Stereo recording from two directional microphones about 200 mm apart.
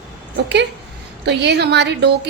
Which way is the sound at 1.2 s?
60° right (ahead or behind).